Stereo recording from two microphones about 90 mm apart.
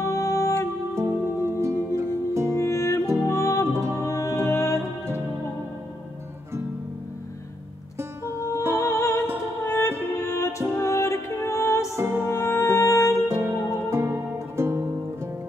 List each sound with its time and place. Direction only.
0.0 s music: 35° left (ahead or behind)
0.9 s music: 30° right (ahead or behind)
2.5 s music: 30° left (ahead or behind)
3.6 s music: 30° right (ahead or behind)
4.0 s music: 35° left (ahead or behind)
8.4 s music: 35° left (ahead or behind)
12.0 s music: 25° right (ahead or behind)
12.3 s music: 30° left (ahead or behind)
13.3 s music: 30° right (ahead or behind)